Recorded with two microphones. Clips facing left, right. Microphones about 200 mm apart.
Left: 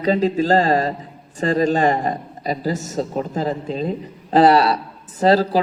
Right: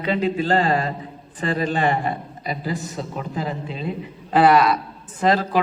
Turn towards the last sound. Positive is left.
turn(degrees=35)  # may be behind; listen again after turning